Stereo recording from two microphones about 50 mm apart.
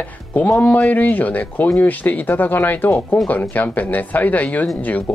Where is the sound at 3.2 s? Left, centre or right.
Left.